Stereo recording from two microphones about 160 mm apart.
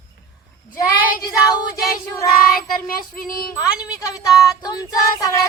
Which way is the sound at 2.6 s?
65° left (ahead or behind).